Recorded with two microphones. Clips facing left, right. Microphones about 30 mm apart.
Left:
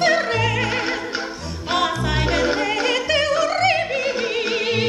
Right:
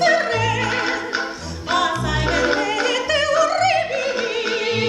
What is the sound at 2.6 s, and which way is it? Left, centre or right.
Opera, left.